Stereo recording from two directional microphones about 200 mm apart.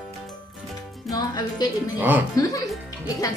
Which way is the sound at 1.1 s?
20° left (ahead or behind).